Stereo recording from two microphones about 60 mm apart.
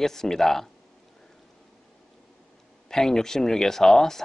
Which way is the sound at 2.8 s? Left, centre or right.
Centre.